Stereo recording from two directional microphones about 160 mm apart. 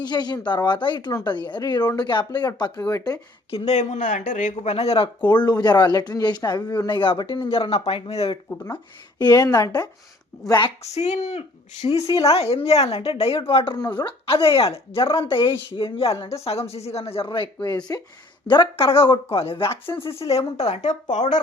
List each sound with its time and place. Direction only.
0.0 s speech: 25° left (ahead or behind)
3.5 s a woman's voice: 40° left (ahead or behind)
8.4 s speech: 10° left (ahead or behind)
9.1 s speech: 25° left (ahead or behind)
10.8 s a woman's voice: 45° left (ahead or behind)
17.9 s a woman's voice: 20° left (ahead or behind); by 21.3 s 50° left (ahead or behind)